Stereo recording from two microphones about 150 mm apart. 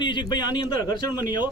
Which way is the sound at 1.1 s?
15° right (ahead or behind).